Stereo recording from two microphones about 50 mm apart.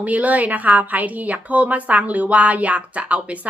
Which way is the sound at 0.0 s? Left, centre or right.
Right.